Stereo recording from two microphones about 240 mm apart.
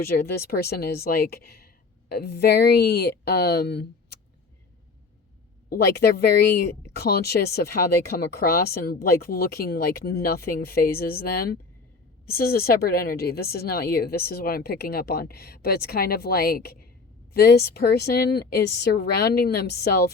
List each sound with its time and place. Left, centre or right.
0.0 s speech: left
5.6 s speech: left